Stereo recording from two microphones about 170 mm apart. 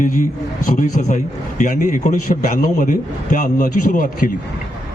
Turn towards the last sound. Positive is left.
turn(degrees=55)  # may be behind; listen again after turning